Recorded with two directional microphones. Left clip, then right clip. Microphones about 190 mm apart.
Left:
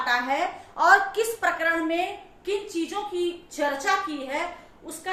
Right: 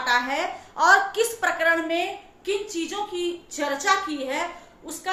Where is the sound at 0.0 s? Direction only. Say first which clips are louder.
Right 1 dB; 10° right (ahead or behind).